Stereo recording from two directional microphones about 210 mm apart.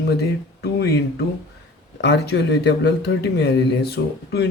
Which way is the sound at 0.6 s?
50° left (ahead or behind).